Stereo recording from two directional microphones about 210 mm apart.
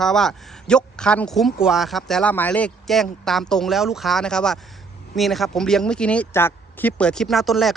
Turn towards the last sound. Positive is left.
turn(degrees=0)  # may be behind; listen again after turning